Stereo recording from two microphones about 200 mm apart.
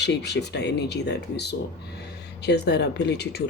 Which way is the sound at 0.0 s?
60° left (ahead or behind).